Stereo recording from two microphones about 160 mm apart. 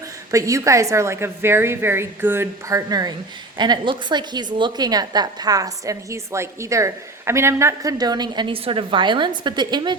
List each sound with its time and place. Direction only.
0.3 s a woman's voice: 20° right (ahead or behind)